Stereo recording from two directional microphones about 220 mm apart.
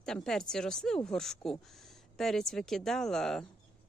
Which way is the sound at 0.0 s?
Centre (ahead or behind).